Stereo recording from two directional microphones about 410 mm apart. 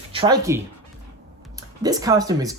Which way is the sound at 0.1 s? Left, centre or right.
Centre.